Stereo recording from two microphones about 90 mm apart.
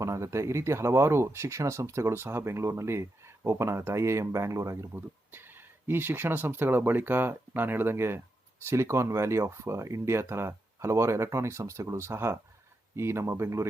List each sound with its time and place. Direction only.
0.0 s speech: 35° right (ahead or behind)